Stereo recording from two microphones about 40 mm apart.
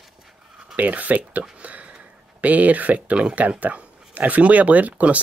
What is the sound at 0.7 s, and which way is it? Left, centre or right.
Speech, right.